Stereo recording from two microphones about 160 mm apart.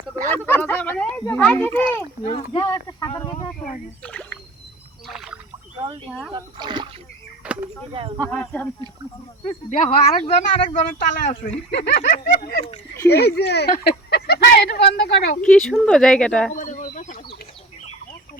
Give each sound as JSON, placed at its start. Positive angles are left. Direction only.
{"t": 0.3, "sound": "a child's voice", "side_deg": 10}
{"t": 2.2, "sound": "speech", "side_deg": 30}
{"t": 4.0, "sound": "speech", "side_deg": 10}
{"t": 5.0, "sound": "rowboat", "side_deg": 0}
{"t": 6.1, "sound": "speech", "side_deg": 0}
{"t": 6.3, "sound": "speech", "side_deg": -30}
{"t": 7.4, "sound": "a sound", "side_deg": -10}
{"t": 8.3, "sound": "a child's voice", "side_deg": 5}
{"t": 9.5, "sound": "speech", "side_deg": 50}
{"t": 11.9, "sound": "a sound", "side_deg": 55}
{"t": 13.1, "sound": "speech", "side_deg": 90}
{"t": 15.4, "sound": "speech", "side_deg": 5}
{"t": 16.5, "sound": "a sound", "side_deg": 55}